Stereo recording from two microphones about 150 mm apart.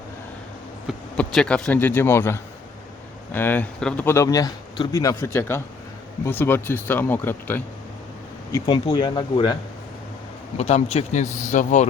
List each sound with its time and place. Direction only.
1.1 s speech: 5° left (ahead or behind)
4.0 s a man's voice: 20° left (ahead or behind)
8.6 s speech: 30° left (ahead or behind)
10.6 s speech: 50° left (ahead or behind)